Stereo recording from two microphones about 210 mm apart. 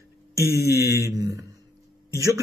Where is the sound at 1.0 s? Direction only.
15° right (ahead or behind).